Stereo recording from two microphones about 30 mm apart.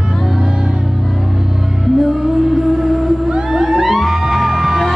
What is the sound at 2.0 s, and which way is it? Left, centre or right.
Music, centre.